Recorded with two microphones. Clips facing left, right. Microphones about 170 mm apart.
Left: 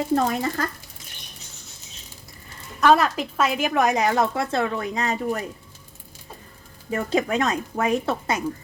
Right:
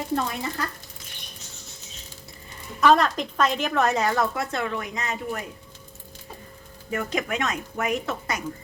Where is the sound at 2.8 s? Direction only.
5° left (ahead or behind); by 5.1 s 30° left (ahead or behind).